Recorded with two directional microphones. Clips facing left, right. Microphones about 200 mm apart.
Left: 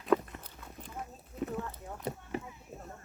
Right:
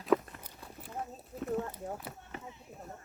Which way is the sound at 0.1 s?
5° right (ahead or behind).